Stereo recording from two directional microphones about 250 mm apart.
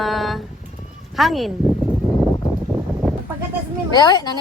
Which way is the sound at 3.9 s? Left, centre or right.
Centre.